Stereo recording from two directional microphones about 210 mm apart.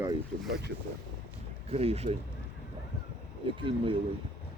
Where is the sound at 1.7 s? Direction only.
30° right (ahead or behind).